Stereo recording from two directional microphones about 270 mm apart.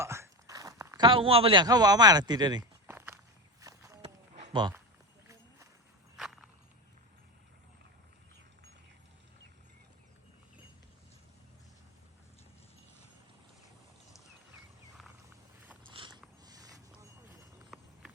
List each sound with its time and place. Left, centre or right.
0.0 s a sound: centre
3.6 s walk: centre
4.5 s speech: centre
6.1 s walk: centre
15.6 s biting: centre
15.9 s mechanisms: centre
16.4 s a sound: centre
17.7 s walk: centre